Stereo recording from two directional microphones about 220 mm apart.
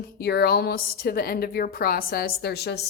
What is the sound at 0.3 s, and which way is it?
A woman's voice, 45° left (ahead or behind).